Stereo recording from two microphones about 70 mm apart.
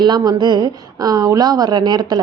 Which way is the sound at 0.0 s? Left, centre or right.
Right.